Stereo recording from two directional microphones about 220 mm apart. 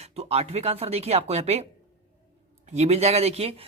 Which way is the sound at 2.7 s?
30° right (ahead or behind).